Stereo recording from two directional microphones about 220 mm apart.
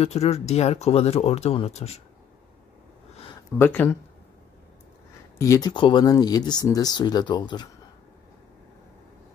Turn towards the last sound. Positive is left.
turn(degrees=20)  # may be behind; listen again after turning